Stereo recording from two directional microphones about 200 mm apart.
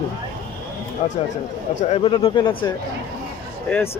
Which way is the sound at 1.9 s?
25° left (ahead or behind).